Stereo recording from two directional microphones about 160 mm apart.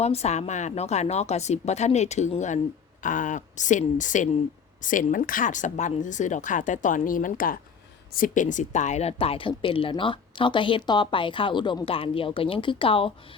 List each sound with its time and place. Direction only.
0.0 s a woman's voice: 40° left (ahead or behind)